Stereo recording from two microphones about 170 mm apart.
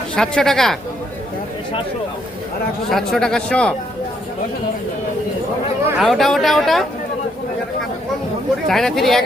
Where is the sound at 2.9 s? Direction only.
Centre (ahead or behind).